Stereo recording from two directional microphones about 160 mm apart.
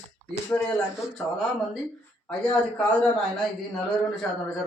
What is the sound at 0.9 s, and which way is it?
Speech, centre (ahead or behind).